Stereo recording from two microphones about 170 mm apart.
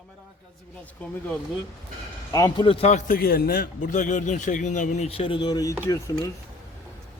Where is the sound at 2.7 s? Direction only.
40° left (ahead or behind); by 6.3 s 20° left (ahead or behind).